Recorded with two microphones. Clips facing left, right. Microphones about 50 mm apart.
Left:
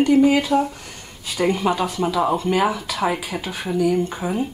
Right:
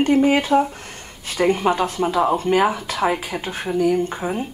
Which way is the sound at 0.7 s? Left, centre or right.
Right.